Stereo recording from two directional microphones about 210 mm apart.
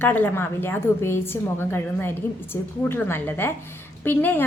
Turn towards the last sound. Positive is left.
turn(degrees=10)  # may be behind; listen again after turning